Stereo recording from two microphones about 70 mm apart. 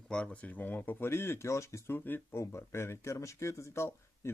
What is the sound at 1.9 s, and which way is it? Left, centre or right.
Speech, left.